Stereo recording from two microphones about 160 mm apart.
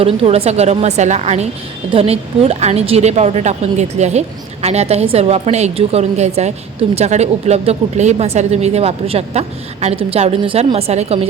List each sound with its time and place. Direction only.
0.0 s a woman's voice: 40° right (ahead or behind)